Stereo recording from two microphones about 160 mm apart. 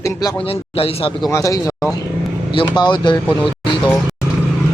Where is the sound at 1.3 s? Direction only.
20° left (ahead or behind).